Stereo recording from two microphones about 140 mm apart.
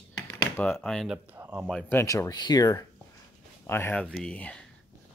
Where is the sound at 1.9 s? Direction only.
20° left (ahead or behind).